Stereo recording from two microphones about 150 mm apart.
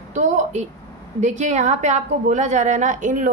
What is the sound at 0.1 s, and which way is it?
A woman's voice, 55° right (ahead or behind).